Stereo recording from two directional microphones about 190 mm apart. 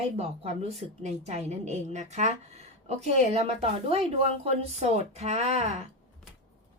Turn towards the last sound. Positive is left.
turn(degrees=-35)  # may be behind; listen again after turning